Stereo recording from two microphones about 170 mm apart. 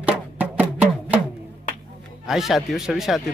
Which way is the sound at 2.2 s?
Centre (ahead or behind).